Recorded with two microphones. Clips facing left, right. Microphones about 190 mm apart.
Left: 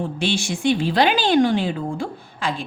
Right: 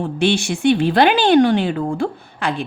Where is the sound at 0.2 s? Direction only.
65° right (ahead or behind).